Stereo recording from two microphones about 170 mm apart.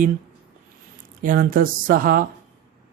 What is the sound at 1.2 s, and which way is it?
Speech, 55° right (ahead or behind).